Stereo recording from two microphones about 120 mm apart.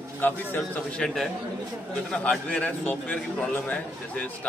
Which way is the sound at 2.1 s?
10° left (ahead or behind).